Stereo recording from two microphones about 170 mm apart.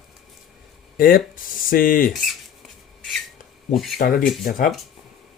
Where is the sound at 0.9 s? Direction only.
60° left (ahead or behind).